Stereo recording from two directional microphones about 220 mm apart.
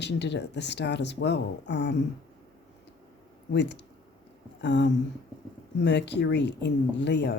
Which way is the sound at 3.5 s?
50° left (ahead or behind).